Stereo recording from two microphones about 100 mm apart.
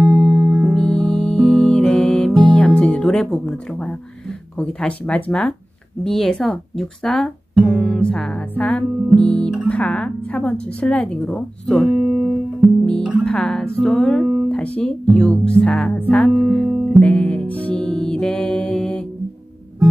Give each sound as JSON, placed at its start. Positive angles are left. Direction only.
{"t": 0.3, "sound": "music", "side_deg": -15}
{"t": 0.7, "sound": "music", "side_deg": 5}
{"t": 4.6, "sound": "speech", "side_deg": 10}
{"t": 11.9, "sound": "music", "side_deg": -10}
{"t": 12.8, "sound": "music", "side_deg": 10}
{"t": 13.2, "sound": "speech", "side_deg": 10}
{"t": 17.0, "sound": "music", "side_deg": 15}